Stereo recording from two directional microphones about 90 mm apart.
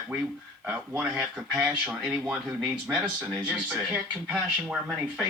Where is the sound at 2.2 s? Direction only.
15° right (ahead or behind).